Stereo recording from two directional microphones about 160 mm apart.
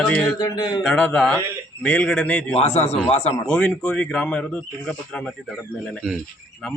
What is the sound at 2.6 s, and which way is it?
Speech, 40° left (ahead or behind).